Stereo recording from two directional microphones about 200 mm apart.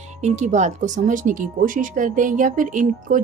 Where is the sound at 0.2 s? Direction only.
35° right (ahead or behind).